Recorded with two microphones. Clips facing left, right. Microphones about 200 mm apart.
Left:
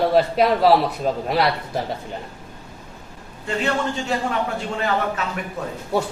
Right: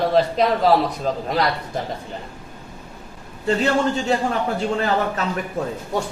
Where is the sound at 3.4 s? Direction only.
35° right (ahead or behind).